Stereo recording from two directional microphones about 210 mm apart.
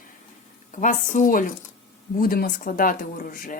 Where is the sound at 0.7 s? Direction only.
35° left (ahead or behind).